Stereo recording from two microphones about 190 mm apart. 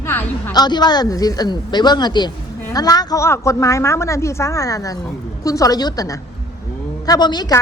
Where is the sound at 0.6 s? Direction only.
20° left (ahead or behind).